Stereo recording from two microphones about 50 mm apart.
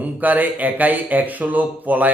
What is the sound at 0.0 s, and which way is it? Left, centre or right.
A man's voice, right.